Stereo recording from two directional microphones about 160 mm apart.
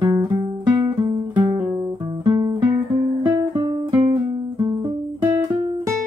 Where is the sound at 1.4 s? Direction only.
30° right (ahead or behind).